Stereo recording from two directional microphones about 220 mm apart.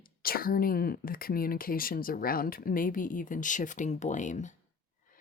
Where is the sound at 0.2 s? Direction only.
40° left (ahead or behind).